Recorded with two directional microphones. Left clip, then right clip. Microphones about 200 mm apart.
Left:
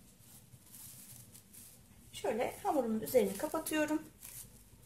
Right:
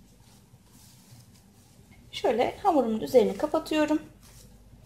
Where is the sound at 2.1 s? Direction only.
30° right (ahead or behind).